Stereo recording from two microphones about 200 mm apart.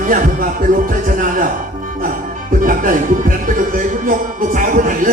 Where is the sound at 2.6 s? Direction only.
45° right (ahead or behind).